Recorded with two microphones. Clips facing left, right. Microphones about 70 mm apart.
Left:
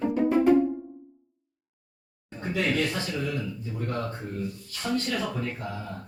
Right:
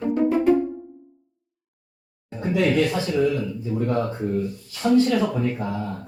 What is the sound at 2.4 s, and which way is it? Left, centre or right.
Speech, centre.